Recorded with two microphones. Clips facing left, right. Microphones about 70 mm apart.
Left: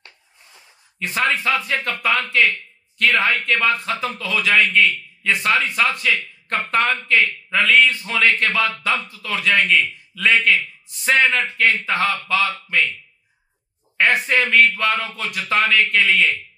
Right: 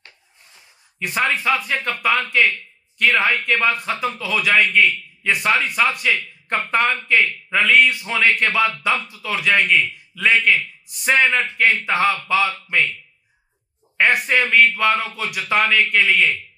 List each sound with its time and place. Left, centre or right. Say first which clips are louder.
0.9 s a man's voice: even; centre
6.0 s speech: even; centre
9.1 s a man's voice: even; centre
13.9 s a man's voice: even; centre